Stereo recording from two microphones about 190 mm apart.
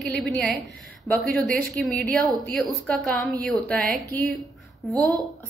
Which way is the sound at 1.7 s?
5° left (ahead or behind).